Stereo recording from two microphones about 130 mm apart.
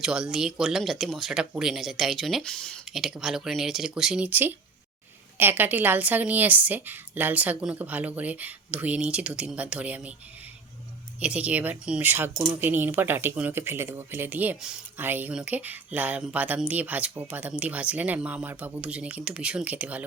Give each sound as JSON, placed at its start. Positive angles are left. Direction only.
{"t": 0.0, "sound": "speech", "side_deg": -5}
{"t": 11.2, "sound": "speech", "side_deg": -10}